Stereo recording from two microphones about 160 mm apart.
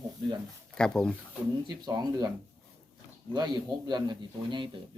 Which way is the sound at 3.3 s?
25° right (ahead or behind).